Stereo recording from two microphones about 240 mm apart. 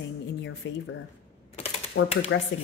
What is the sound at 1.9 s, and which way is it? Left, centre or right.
Speech, left.